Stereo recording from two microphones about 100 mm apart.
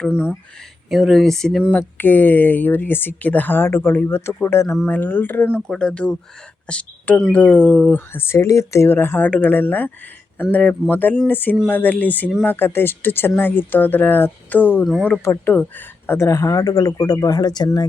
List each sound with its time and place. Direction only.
0.1 s speech: 10° right (ahead or behind)
2.0 s speech: 20° left (ahead or behind)
5.6 s speech: 5° left (ahead or behind); by 17.7 s 40° left (ahead or behind)